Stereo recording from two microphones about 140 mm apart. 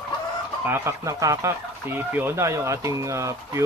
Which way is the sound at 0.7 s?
20° right (ahead or behind).